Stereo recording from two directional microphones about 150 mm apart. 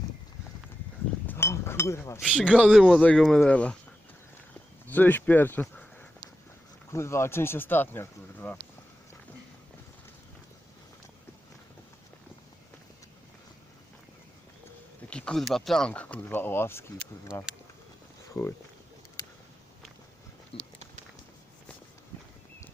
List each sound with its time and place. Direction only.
1.3 s chink: 15° left (ahead or behind)
2.5 s a man's voice: 10° right (ahead or behind); by 3.8 s 10° left (ahead or behind)
4.9 s speech: 10° left (ahead or behind)
15.1 s speech: 5° left (ahead or behind); by 18.5 s 20° left (ahead or behind)
20.5 s a sound: 35° left (ahead or behind)